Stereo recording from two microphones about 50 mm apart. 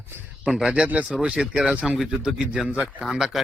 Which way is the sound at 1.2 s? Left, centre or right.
Centre.